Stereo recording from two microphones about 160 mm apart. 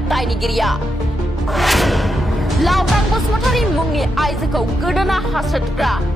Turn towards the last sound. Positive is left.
turn(degrees=0)  # may be behind; listen again after turning